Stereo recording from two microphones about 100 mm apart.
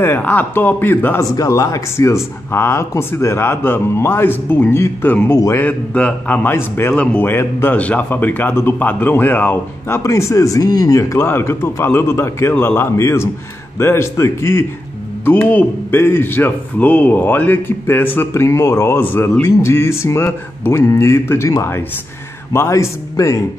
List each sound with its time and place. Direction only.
0.0 s speech: 20° left (ahead or behind)
1.3 s speech: 35° left (ahead or behind)
5.7 s a man's voice: 15° left (ahead or behind)
15.2 s speech: 15° left (ahead or behind); by 23.4 s 35° left (ahead or behind)